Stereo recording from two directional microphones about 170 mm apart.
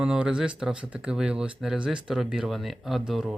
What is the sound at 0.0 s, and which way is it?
Speech, 5° right (ahead or behind).